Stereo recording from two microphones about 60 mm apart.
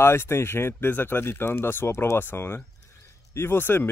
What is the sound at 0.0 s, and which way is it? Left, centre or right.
Speech, left.